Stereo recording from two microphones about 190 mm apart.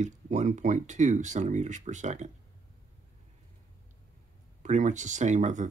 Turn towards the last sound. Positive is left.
turn(degrees=-40)  # may be behind; listen again after turning